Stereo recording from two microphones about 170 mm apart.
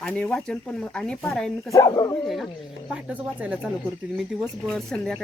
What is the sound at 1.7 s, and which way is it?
Speech, 20° left (ahead or behind).